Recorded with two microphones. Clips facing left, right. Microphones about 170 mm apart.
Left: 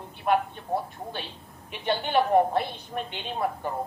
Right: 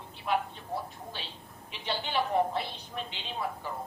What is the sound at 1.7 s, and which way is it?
A woman's voice, 55° left (ahead or behind).